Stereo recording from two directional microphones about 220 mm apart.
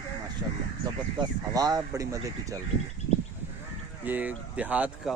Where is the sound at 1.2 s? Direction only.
15° right (ahead or behind).